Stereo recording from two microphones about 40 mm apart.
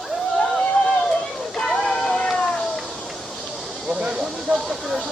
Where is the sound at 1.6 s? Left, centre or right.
Centre.